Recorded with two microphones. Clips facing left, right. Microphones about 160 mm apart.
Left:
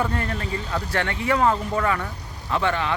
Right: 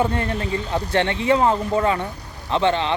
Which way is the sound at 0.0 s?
25° right (ahead or behind).